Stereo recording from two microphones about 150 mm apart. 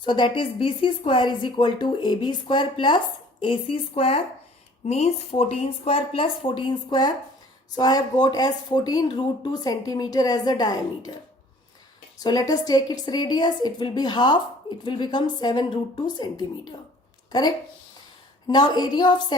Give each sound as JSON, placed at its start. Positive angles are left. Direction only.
{"t": 0.0, "sound": "a woman's voice", "side_deg": 30}
{"t": 12.2, "sound": "a woman's voice", "side_deg": 25}
{"t": 18.4, "sound": "a woman's voice", "side_deg": 30}